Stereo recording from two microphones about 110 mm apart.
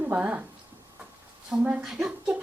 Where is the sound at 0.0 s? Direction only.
15° right (ahead or behind).